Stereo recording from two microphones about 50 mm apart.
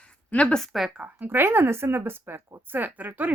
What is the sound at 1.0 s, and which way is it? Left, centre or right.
Speech, right.